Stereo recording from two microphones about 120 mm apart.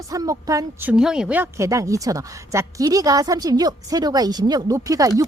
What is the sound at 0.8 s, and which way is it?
Speech, 5° right (ahead or behind).